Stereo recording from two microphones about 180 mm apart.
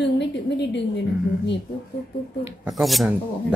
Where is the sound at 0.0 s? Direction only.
75° left (ahead or behind).